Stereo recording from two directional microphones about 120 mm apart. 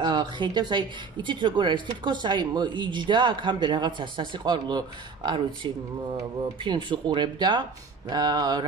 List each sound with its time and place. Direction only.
0.0 s speech: 35° right (ahead or behind)